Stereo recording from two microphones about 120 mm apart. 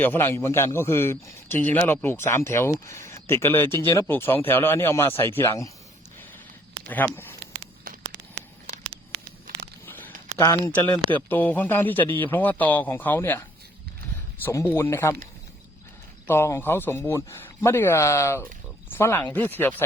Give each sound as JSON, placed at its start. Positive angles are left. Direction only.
{"t": 0.0, "sound": "a man's voice", "side_deg": 20}
{"t": 6.9, "sound": "speech", "side_deg": 15}
{"t": 10.3, "sound": "a man's voice", "side_deg": 25}
{"t": 11.1, "sound": "speech", "side_deg": 15}
{"t": 14.4, "sound": "a man's voice", "side_deg": 20}
{"t": 16.2, "sound": "a man's voice", "side_deg": 20}